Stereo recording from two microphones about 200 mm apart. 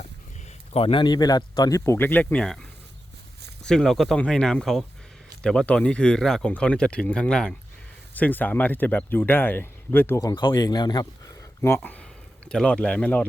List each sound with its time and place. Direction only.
0.7 s speech: 25° left (ahead or behind); by 2.6 s 5° left (ahead or behind)
3.7 s speech: 5° left (ahead or behind)